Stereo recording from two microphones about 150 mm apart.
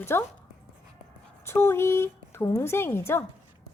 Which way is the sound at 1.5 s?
15° left (ahead or behind).